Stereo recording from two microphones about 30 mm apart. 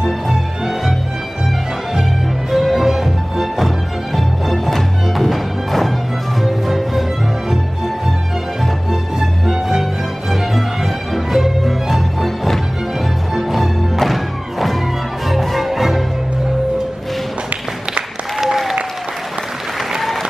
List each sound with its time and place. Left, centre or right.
0.0 s music: centre
2.5 s music: centre
9.5 s music: centre
13.3 s music: centre
18.4 s applause: centre
20.0 s applause: centre